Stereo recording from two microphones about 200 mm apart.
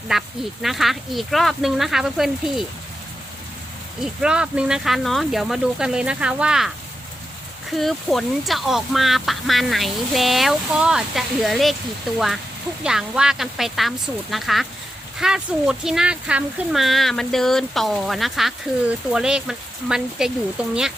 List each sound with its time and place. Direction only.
0.1 s speech: centre (ahead or behind)
4.0 s speech: 5° right (ahead or behind)
7.8 s speech: centre (ahead or behind)